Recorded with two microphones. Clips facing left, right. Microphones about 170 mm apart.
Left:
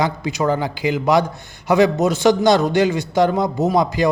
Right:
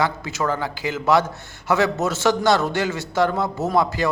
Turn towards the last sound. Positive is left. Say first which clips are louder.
# left 3 dB
turn(degrees=15)  # may be behind; listen again after turning